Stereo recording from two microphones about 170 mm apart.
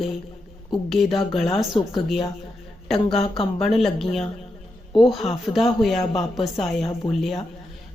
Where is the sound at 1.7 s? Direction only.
30° left (ahead or behind).